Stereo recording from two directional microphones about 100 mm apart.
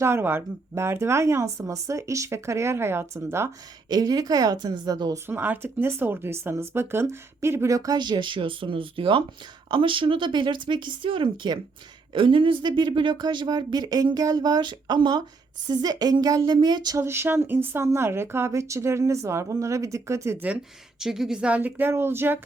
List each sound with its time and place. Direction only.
0.0 s speech: 25° right (ahead or behind)
3.8 s a woman's voice: 40° right (ahead or behind)
5.2 s a woman's voice: 20° right (ahead or behind); by 17.0 s 45° right (ahead or behind)
17.0 s speech: 25° right (ahead or behind)
21.0 s speech: 5° right (ahead or behind); by 22.4 s 25° right (ahead or behind)